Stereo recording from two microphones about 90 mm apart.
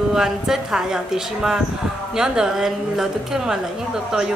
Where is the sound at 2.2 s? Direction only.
5° right (ahead or behind).